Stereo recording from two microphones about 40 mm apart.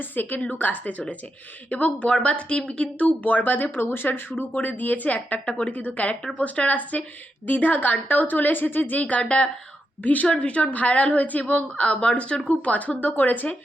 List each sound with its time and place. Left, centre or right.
0.0 s a woman's voice: left
2.0 s speech: left
3.2 s speech: left
4.5 s a woman's voice: left
9.0 s a woman's voice: left
10.2 s a woman's voice: left